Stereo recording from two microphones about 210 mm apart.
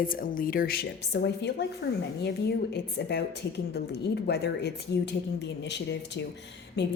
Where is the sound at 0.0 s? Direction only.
40° left (ahead or behind).